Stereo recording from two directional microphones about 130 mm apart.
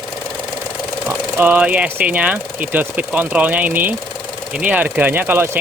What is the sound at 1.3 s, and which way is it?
Speech, 15° right (ahead or behind).